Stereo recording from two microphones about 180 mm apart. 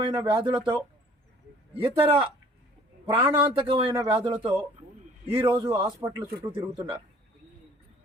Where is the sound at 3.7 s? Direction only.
30° right (ahead or behind).